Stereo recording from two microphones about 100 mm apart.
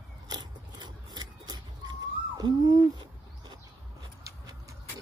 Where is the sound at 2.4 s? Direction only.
45° right (ahead or behind).